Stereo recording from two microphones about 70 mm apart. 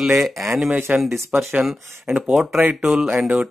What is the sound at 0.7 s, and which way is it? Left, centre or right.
Speech, right.